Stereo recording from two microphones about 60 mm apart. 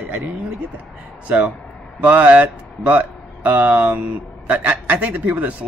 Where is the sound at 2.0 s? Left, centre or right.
Right.